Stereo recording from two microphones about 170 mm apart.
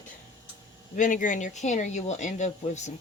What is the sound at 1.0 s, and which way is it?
Speech, 50° left (ahead or behind).